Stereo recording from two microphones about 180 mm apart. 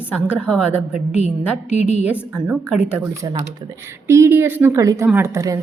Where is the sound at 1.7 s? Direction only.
40° left (ahead or behind).